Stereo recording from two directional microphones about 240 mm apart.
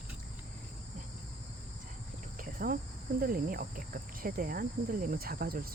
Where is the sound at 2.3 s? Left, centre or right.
Right.